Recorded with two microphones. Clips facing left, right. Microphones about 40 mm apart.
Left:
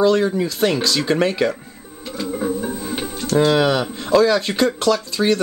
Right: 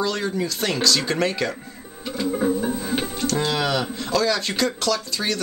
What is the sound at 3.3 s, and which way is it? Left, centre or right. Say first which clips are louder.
Speech: left 8 dB; centre.